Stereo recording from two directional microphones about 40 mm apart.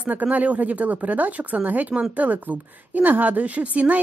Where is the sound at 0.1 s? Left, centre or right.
Right.